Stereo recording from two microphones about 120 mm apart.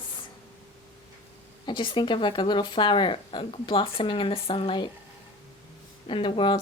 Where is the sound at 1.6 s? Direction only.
45° left (ahead or behind).